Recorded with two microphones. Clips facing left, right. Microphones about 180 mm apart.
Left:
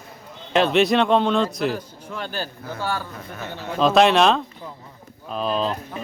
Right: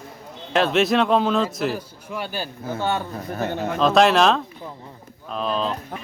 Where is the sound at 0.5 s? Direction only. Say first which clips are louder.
Left 1 dB; centre (ahead or behind); by 3.7 s 45° right (ahead or behind).